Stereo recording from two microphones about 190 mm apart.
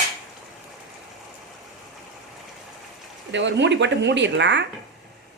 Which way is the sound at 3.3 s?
70° right (ahead or behind).